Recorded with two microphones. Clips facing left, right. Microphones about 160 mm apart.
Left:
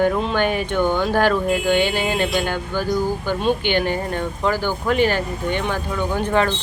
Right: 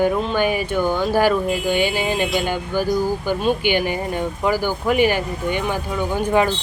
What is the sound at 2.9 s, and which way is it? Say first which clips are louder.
Speech: even; centre (ahead or behind).